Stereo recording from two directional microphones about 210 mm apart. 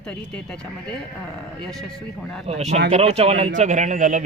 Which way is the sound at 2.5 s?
30° right (ahead or behind).